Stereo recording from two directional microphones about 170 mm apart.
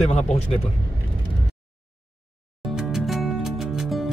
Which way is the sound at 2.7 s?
Centre (ahead or behind).